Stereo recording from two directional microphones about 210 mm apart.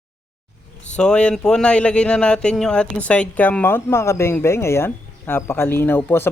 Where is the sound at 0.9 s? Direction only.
5° left (ahead or behind).